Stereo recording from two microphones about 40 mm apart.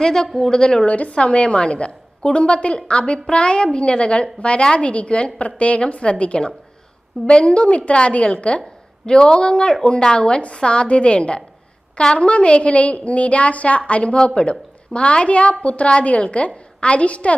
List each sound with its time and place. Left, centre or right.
0.0 s a woman's voice: centre
0.9 s a woman's voice: left